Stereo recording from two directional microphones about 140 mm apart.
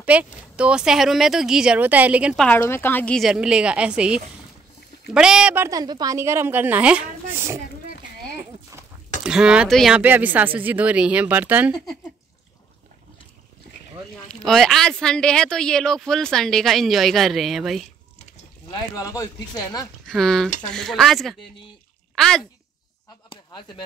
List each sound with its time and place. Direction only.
0.0 s speech: 10° right (ahead or behind)
2.3 s a woman's voice: 5° left (ahead or behind)
3.2 s speech: 5° right (ahead or behind)
5.7 s speech: 25° right (ahead or behind); by 7.4 s 10° right (ahead or behind)
9.2 s speech: 5° right (ahead or behind)
9.9 s speech: 10° right (ahead or behind)
14.1 s speech: centre (ahead or behind)
18.7 s speech: 25° left (ahead or behind)
20.2 s speech: centre (ahead or behind)